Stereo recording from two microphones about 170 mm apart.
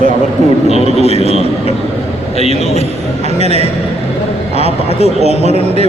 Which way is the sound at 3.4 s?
40° right (ahead or behind).